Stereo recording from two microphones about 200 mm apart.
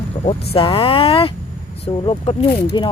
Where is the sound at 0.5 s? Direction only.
25° left (ahead or behind).